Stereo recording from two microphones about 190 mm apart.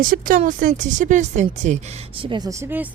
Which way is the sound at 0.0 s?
45° right (ahead or behind).